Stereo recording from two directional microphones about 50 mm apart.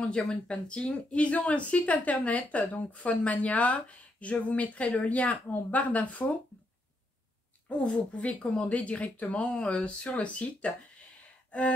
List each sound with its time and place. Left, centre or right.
0.3 s speech: left
7.7 s speech: left